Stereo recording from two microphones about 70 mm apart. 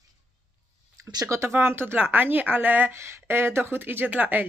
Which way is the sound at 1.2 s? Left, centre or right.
Right.